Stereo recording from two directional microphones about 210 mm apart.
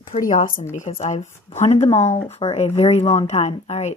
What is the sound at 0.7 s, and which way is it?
A woman's voice, 30° left (ahead or behind).